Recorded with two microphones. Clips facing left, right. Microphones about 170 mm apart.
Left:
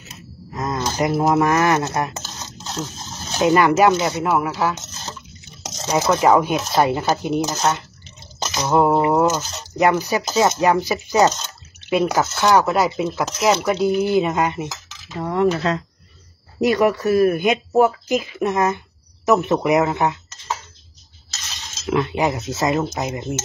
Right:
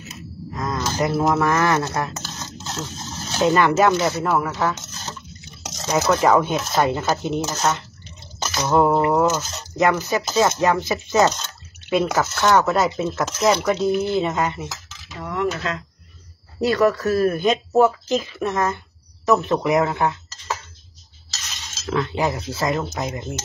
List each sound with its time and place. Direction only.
0.6 s speech: 20° left (ahead or behind)
3.3 s speech: 10° left (ahead or behind)
5.9 s speech: 20° left (ahead or behind)
8.4 s a sound: 15° left (ahead or behind)
9.0 s speech: 10° left (ahead or behind)
15.1 s cutlery: 30° left (ahead or behind)
16.6 s speech: 20° left (ahead or behind)
21.8 s speech: 20° left (ahead or behind)